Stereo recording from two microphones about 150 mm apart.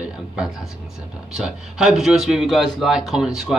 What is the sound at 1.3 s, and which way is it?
Speech, 5° right (ahead or behind).